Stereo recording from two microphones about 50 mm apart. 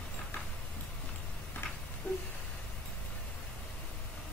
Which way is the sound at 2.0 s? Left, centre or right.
Left.